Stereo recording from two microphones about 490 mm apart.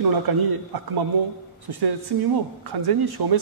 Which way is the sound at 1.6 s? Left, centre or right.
Right.